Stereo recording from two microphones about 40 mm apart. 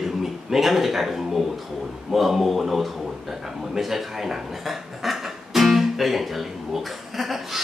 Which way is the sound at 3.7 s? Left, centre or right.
Centre.